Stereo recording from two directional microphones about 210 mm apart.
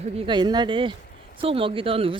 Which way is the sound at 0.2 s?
20° right (ahead or behind).